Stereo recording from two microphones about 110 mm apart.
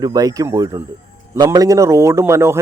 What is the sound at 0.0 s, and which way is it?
A man's voice, 35° right (ahead or behind).